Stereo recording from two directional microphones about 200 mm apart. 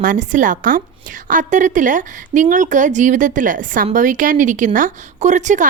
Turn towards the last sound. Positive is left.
turn(degrees=-40)  # may be behind; listen again after turning